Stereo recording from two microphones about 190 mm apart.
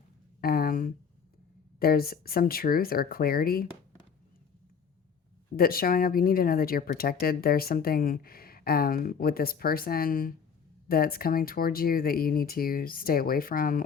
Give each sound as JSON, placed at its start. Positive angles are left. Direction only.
{"t": 0.4, "sound": "a sound", "side_deg": 50}
{"t": 1.8, "sound": "speech", "side_deg": 50}
{"t": 5.5, "sound": "speech", "side_deg": 50}